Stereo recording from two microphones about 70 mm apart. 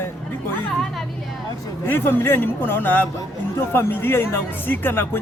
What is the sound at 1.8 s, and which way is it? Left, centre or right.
A man's voice, left.